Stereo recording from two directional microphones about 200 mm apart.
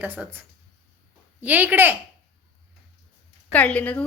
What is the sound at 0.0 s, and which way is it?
Speech, 10° right (ahead or behind).